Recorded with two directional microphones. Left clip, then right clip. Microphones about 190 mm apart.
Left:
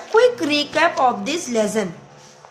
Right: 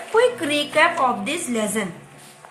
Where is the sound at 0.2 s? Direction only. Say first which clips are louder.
Left 3 dB; 65° left (ahead or behind).